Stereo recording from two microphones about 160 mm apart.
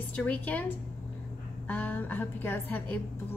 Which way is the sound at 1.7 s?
10° left (ahead or behind).